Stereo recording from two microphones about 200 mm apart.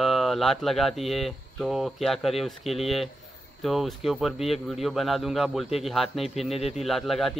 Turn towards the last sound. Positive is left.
turn(degrees=0)  # may be behind; listen again after turning